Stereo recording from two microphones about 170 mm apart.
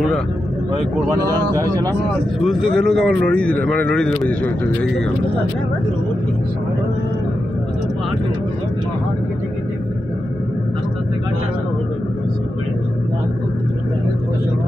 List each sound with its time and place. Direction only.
1.1 s speech: 20° right (ahead or behind)
2.4 s speech: 5° left (ahead or behind)